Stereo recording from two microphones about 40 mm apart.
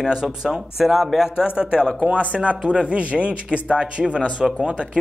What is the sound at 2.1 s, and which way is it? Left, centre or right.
Speech, right.